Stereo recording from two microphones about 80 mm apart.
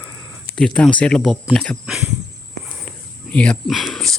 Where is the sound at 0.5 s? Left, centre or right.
Centre.